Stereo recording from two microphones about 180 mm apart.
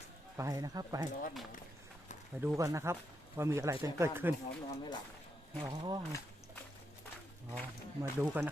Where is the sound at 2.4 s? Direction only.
15° right (ahead or behind).